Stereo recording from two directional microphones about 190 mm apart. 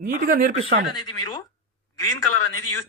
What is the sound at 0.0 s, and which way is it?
Speech, 45° right (ahead or behind).